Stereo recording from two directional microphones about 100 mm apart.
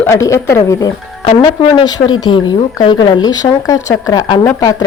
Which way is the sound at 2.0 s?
55° left (ahead or behind).